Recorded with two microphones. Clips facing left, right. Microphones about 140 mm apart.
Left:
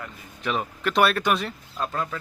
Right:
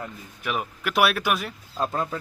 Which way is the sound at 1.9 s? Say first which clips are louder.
Right 2 dB; 25° right (ahead or behind).